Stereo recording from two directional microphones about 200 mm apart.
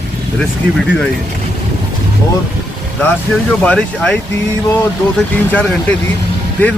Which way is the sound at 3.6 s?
5° left (ahead or behind).